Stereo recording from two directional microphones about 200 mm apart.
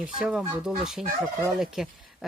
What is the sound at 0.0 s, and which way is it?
Speech, 5° right (ahead or behind).